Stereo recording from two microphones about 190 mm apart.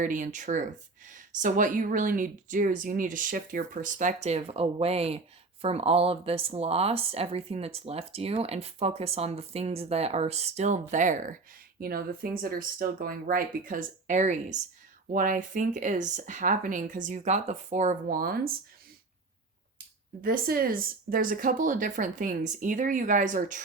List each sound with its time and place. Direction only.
0.0 s speech: 40° right (ahead or behind)
20.2 s speech: 50° right (ahead or behind)